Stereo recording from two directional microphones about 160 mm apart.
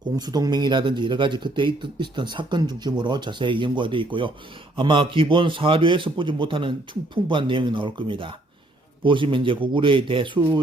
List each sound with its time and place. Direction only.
0.2 s a man's voice: 25° right (ahead or behind)